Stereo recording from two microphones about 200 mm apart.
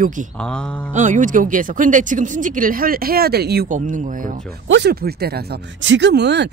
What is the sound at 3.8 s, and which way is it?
Speech, 40° right (ahead or behind).